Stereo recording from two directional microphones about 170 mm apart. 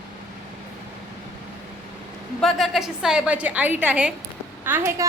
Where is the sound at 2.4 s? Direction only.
Centre (ahead or behind).